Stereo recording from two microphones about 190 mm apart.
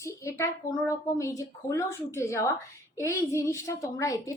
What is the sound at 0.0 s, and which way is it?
Speech, 15° left (ahead or behind).